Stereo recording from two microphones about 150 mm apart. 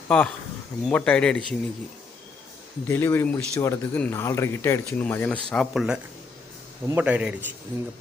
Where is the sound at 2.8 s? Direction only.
15° left (ahead or behind); by 7.4 s 10° right (ahead or behind).